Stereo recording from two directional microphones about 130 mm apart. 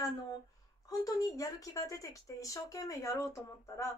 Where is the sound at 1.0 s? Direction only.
25° left (ahead or behind).